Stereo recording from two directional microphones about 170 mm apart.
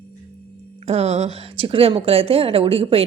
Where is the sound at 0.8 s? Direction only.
40° right (ahead or behind).